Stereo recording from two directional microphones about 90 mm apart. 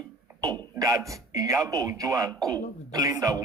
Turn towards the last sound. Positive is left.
turn(degrees=-45)  # may be behind; listen again after turning